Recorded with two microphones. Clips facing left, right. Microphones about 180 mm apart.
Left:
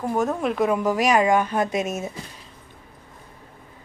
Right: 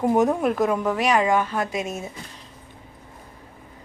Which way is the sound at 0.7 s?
10° left (ahead or behind).